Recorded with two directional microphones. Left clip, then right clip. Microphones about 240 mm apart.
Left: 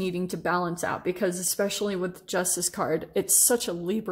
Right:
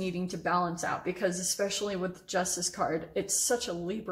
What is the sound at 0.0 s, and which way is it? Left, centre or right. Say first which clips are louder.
Speech: left 4 dB; left.